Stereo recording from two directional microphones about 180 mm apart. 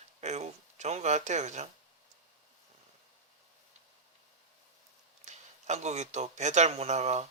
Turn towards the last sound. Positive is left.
turn(degrees=-40)  # may be behind; listen again after turning